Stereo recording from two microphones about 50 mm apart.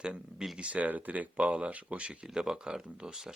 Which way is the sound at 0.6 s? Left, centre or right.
Right.